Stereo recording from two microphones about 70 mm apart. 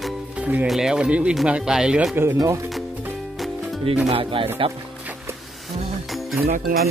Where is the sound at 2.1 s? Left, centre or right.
Right.